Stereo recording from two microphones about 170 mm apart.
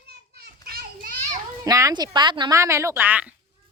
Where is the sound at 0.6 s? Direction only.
60° right (ahead or behind).